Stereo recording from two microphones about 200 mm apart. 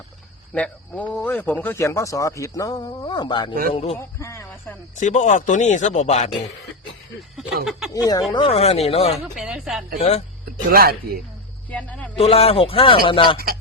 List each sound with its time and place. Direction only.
0.5 s speech: 5° left (ahead or behind)
4.9 s speech: 35° left (ahead or behind)
7.3 s speech: centre (ahead or behind)
7.9 s speech: 20° left (ahead or behind)
9.1 s speech: centre (ahead or behind)
10.0 s speech: 35° left (ahead or behind)
10.7 s speech: 50° right (ahead or behind)
11.7 s a sound: 5° left (ahead or behind)
12.1 s speech: 30° left (ahead or behind)